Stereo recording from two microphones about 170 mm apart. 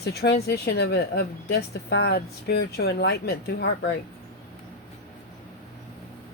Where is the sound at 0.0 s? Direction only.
75° left (ahead or behind).